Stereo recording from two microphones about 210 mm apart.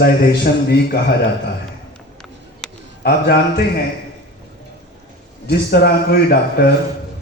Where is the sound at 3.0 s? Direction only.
50° left (ahead or behind).